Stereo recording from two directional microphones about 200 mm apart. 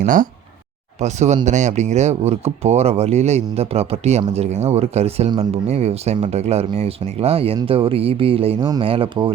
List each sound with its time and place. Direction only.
0.0 s speech: 40° right (ahead or behind); by 9.3 s 25° right (ahead or behind)